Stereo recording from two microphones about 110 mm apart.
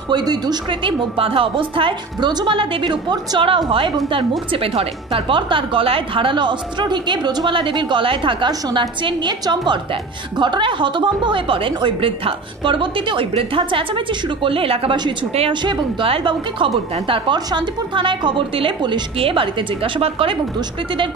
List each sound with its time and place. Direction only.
0.1 s a woman's voice: 40° right (ahead or behind); by 20.3 s 55° right (ahead or behind)